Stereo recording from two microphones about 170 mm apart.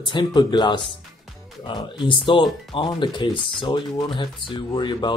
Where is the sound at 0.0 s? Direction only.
25° left (ahead or behind).